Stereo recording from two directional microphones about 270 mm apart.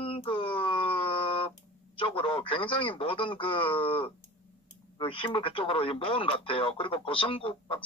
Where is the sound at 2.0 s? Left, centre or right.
Centre.